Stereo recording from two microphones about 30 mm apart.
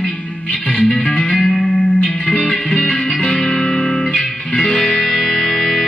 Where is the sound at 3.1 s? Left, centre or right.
Left.